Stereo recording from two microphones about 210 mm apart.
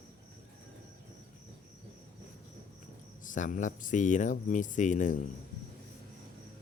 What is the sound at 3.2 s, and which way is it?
Speech, 40° left (ahead or behind).